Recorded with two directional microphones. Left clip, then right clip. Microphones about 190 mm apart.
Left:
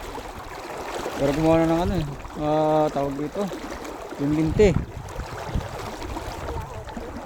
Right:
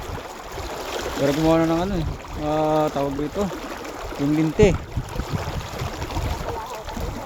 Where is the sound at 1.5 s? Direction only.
5° right (ahead or behind).